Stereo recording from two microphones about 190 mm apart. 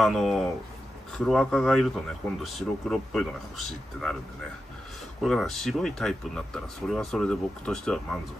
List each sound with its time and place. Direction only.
0.0 s speech: centre (ahead or behind)
5.2 s speech: centre (ahead or behind)